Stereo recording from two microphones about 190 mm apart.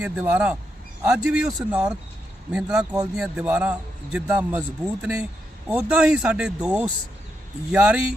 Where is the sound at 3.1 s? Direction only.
5° right (ahead or behind).